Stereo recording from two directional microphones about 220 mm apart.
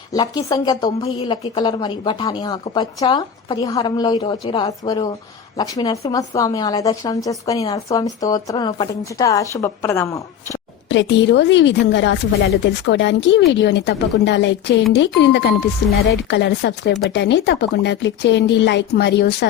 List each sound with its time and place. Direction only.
0.1 s a woman's voice: 15° left (ahead or behind)
10.8 s speech: 55° left (ahead or behind)